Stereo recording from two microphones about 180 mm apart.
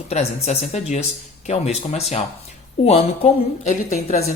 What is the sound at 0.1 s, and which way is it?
A woman's voice, 40° left (ahead or behind).